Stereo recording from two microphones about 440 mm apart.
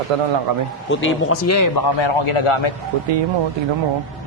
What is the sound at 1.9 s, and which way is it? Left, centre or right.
Speech, left.